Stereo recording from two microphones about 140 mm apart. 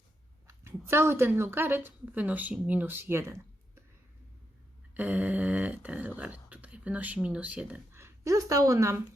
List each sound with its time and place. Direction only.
0.4 s speech: 20° right (ahead or behind)
4.9 s speech: 10° right (ahead or behind)